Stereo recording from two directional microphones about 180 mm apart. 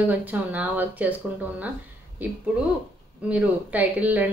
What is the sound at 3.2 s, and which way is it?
A woman's voice, 5° right (ahead or behind).